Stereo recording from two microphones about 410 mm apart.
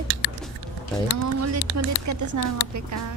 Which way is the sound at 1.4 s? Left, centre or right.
Right.